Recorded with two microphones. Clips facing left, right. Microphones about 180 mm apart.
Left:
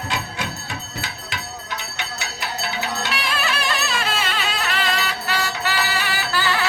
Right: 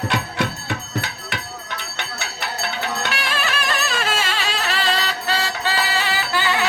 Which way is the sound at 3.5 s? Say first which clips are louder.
Right 1 dB; 45° right (ahead or behind).